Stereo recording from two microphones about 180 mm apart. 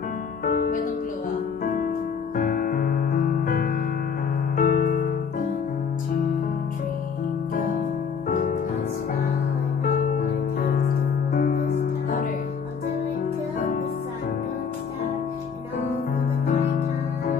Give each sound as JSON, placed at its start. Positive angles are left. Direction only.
{"t": 0.5, "sound": "music", "side_deg": 45}
{"t": 8.3, "sound": "music", "side_deg": 45}
{"t": 11.3, "sound": "music", "side_deg": 50}